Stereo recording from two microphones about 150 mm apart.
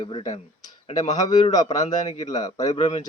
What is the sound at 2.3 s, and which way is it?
Speech, 25° left (ahead or behind).